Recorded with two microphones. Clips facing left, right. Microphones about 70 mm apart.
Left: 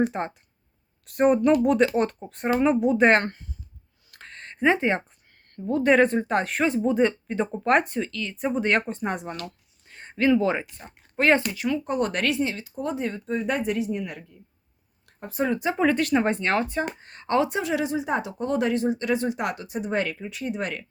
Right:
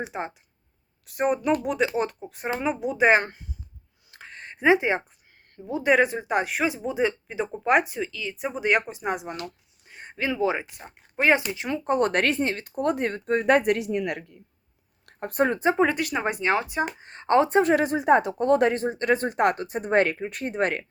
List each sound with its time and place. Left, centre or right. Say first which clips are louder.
0.0 s speech: left 6 dB; centre
4.2 s a sound: left 1 dB; centre
5.5 s speech: left 2 dB; centre
11.5 s speech: right 1 dB; right
15.0 s a sound: right 3 dB; right
15.5 s speech: right 3 dB; right
15.8 s speech: left 2 dB; centre
17.1 s speech: right 4 dB; right